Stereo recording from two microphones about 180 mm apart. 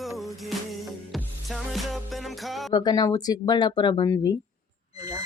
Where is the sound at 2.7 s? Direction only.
20° left (ahead or behind).